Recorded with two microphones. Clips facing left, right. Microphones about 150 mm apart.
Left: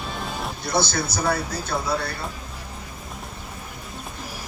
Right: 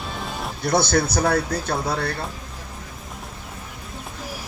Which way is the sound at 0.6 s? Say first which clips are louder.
Right 5 dB; 60° right (ahead or behind).